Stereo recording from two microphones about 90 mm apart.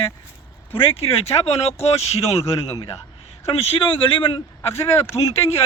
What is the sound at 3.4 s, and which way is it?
Speech, 90° left.